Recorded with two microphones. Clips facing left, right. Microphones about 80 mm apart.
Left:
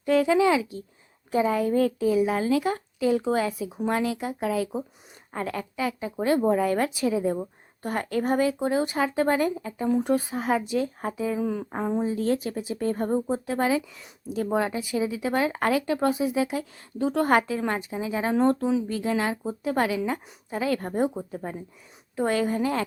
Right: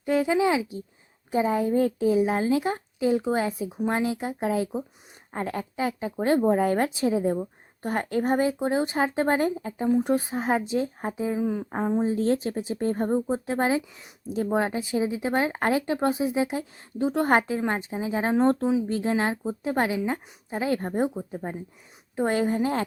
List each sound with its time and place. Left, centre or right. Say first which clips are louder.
0.0 s a woman's voice: left 2 dB; right
11.3 s speech: right 1 dB; centre
12.0 s a woman's voice: right 1 dB; right